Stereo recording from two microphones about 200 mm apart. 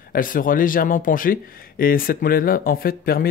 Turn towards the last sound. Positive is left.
turn(degrees=45)  # may be behind; listen again after turning